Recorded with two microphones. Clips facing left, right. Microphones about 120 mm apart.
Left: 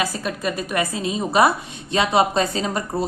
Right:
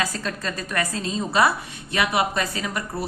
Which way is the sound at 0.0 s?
15° left (ahead or behind).